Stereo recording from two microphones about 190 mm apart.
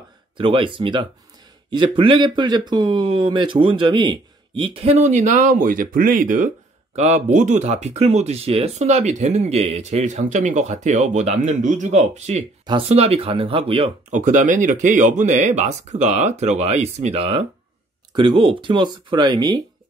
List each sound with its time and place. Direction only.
0.4 s speech: 25° right (ahead or behind)
14.2 s speech: 40° right (ahead or behind); by 19.6 s 20° right (ahead or behind)